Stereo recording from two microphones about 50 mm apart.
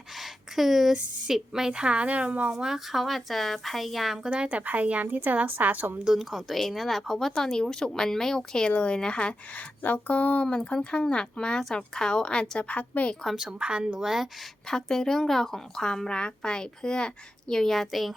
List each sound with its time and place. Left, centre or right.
0.2 s a sound: centre
1.3 s a woman's voice: centre; by 2.6 s right
2.6 s speech: centre
4.4 s a woman's voice: right
6.1 s speech: centre
8.7 s a woman's voice: left
9.8 s a woman's voice: left
10.4 s a woman's voice: centre
13.3 s a woman's voice: centre
14.0 s speech: centre
14.7 s speech: centre